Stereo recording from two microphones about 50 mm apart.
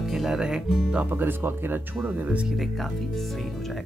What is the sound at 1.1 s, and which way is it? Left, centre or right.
Speech, right.